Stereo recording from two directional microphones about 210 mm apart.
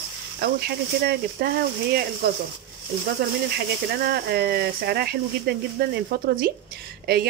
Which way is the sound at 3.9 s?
50° right (ahead or behind).